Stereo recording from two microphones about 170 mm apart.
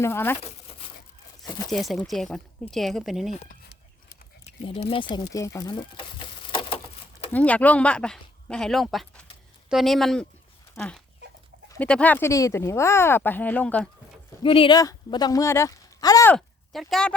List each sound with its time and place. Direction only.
0.0 s speech: 15° left (ahead or behind)
1.4 s speech: centre (ahead or behind)
4.6 s speech: 30° left (ahead or behind)
5.5 s a sound: 25° left (ahead or behind)
7.3 s speech: 10° left (ahead or behind)
10.8 s dog: 5° left (ahead or behind)
11.8 s speech: 10° left (ahead or behind)
14.4 s speech: 30° left (ahead or behind)
16.3 s speech: 5° left (ahead or behind)